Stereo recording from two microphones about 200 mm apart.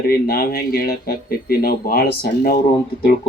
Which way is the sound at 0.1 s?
50° left (ahead or behind).